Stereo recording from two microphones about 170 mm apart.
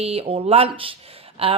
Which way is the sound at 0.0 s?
35° right (ahead or behind).